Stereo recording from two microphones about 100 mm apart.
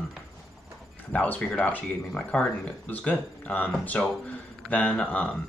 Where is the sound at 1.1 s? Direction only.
15° left (ahead or behind).